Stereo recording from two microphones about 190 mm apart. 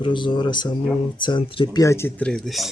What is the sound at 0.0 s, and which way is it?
Speech, 25° left (ahead or behind).